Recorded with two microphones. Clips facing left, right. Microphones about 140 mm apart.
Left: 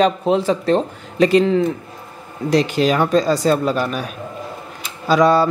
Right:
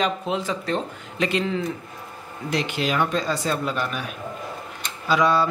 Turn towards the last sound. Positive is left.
turn(degrees=40)  # may be behind; listen again after turning